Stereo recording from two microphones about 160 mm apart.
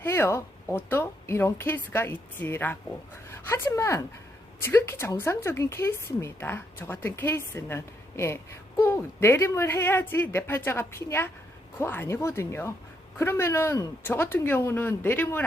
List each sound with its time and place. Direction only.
0.0 s a woman's voice: 15° left (ahead or behind)